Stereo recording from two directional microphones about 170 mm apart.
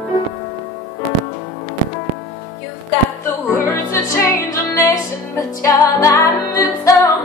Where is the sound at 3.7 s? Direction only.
15° left (ahead or behind).